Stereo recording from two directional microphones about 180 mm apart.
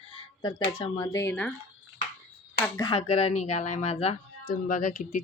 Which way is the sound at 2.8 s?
30° left (ahead or behind).